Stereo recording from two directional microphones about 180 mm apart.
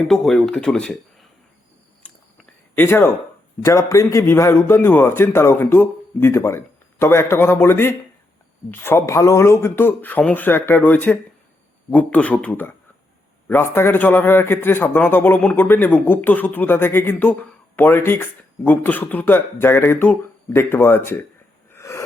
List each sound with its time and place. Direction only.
0.1 s speech: centre (ahead or behind)
2.0 s biting: 10° left (ahead or behind)
2.7 s a man's voice: 10° left (ahead or behind)
21.7 s wheeze: 15° left (ahead or behind)